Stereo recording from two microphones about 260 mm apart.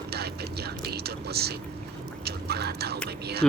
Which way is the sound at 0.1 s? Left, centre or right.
Right.